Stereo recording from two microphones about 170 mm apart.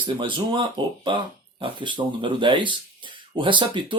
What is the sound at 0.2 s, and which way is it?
Speech, 30° right (ahead or behind).